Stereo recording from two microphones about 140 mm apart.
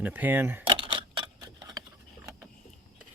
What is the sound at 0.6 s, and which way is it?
Camera, 35° right (ahead or behind).